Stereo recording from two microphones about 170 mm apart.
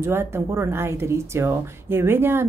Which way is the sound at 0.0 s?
15° right (ahead or behind).